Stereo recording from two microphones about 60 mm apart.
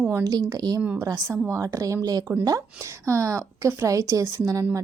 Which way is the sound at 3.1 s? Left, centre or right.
Right.